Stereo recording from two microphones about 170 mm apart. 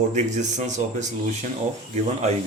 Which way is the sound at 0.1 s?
45° right (ahead or behind).